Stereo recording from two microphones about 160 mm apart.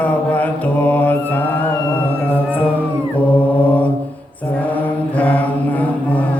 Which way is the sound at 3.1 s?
10° left (ahead or behind).